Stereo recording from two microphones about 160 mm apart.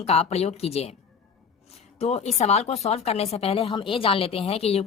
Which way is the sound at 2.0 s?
40° left (ahead or behind).